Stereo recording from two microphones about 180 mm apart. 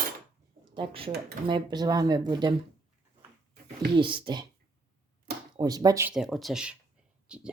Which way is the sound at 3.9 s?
25° right (ahead or behind).